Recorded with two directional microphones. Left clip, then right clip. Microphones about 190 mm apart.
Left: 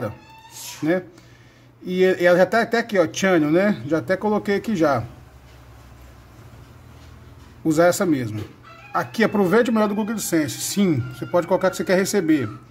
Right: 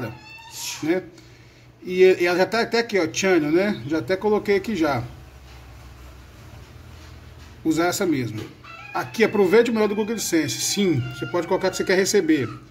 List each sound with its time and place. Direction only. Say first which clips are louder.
2.0 s speech: left 3 dB; 50° left (ahead or behind)
7.6 s speech: left 4 dB; 50° left (ahead or behind)